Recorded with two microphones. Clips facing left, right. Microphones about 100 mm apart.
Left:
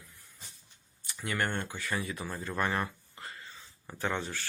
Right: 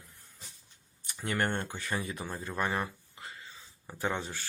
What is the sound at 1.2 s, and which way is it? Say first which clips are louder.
Speech: right 1 dB; 30° right (ahead or behind).